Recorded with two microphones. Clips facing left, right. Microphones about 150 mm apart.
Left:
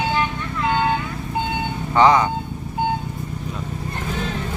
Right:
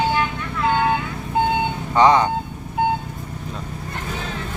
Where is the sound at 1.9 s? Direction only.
20° right (ahead or behind).